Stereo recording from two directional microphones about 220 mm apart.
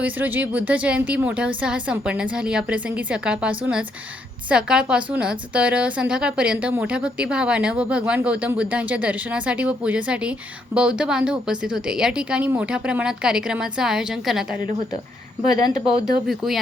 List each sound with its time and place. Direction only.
0.0 s speech: 5° right (ahead or behind)
16.2 s speech: centre (ahead or behind)